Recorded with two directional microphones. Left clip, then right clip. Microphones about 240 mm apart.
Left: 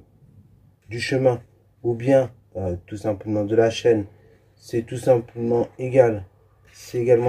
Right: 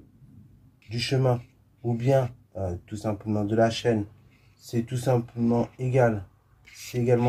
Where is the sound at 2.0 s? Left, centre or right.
Centre.